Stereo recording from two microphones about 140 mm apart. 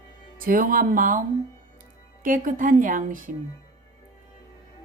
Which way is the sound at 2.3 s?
70° right (ahead or behind).